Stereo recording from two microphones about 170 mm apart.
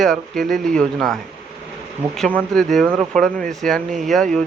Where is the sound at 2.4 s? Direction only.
Centre (ahead or behind).